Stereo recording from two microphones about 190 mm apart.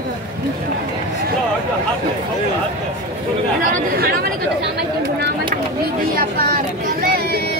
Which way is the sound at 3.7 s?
55° right (ahead or behind).